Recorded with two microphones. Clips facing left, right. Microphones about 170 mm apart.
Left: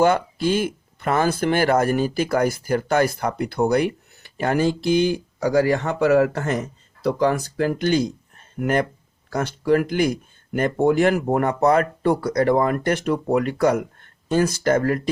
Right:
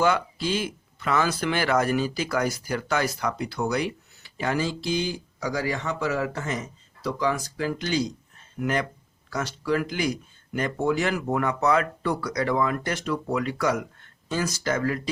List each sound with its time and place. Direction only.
0.0 s speech: 50° left (ahead or behind)